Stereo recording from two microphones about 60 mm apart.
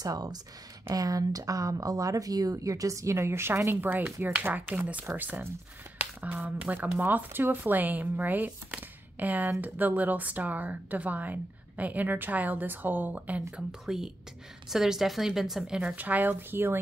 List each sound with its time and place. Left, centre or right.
0.0 s speech: right
13.7 s a woman's voice: centre
16.0 s speech: right